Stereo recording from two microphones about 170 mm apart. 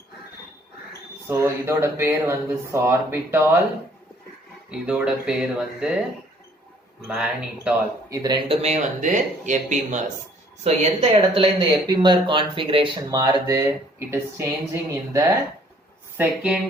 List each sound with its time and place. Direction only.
1.3 s speech: 15° right (ahead or behind)
4.7 s speech: 5° right (ahead or behind)
7.1 s speech: 5° right (ahead or behind)
8.1 s speech: 25° right (ahead or behind)
8.6 s a woman's voice: 45° right (ahead or behind)
11.9 s speech: 25° right (ahead or behind)
16.1 s speech: 5° right (ahead or behind)